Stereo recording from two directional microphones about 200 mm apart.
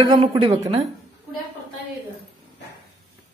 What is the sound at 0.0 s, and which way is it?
Speech, 20° right (ahead or behind).